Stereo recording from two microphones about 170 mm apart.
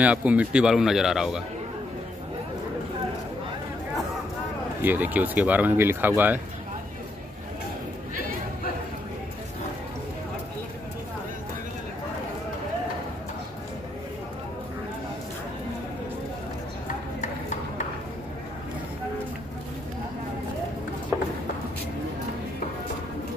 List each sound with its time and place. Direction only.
0.0 s a man's voice: 10° right (ahead or behind)
4.8 s speech: 10° right (ahead or behind)
16.8 s a sound: 50° left (ahead or behind)